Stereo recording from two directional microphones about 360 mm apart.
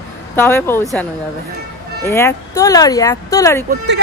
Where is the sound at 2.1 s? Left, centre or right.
Centre.